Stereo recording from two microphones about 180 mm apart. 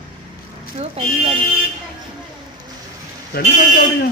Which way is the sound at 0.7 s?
35° right (ahead or behind).